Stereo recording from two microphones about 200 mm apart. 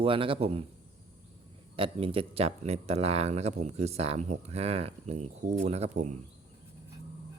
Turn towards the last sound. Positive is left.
turn(degrees=-35)  # may be behind; listen again after turning